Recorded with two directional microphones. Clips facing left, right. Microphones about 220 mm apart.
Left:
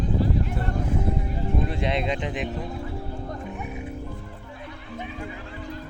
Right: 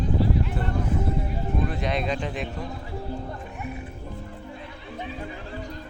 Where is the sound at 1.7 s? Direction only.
25° left (ahead or behind).